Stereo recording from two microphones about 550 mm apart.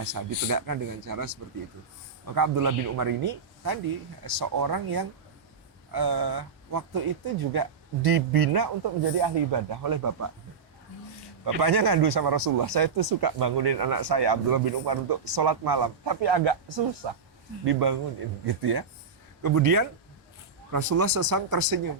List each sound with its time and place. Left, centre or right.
0.0 s speech: right
11.4 s speech: right